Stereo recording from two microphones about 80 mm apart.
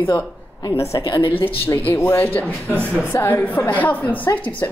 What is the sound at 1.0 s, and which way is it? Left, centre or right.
Speech, left.